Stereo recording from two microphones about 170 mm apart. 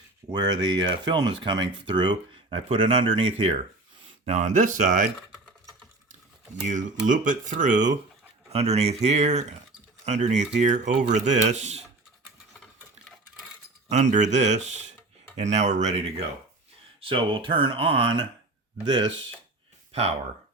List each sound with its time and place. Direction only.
0.3 s speech: 25° right (ahead or behind)
4.3 s speech: 45° right (ahead or behind)
6.7 s speech: 50° right (ahead or behind)
13.8 s speech: 45° right (ahead or behind); by 19.1 s 25° right (ahead or behind)
19.9 s speech: 35° right (ahead or behind)